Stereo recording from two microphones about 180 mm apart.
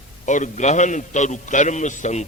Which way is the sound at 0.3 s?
45° left (ahead or behind).